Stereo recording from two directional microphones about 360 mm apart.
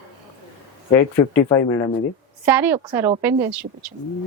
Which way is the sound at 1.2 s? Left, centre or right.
Centre.